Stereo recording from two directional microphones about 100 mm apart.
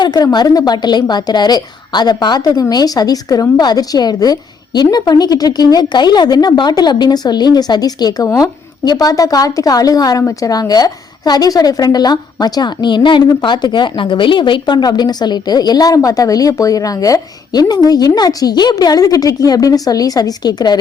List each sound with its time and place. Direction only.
0.0 s a woman's voice: 45° left (ahead or behind)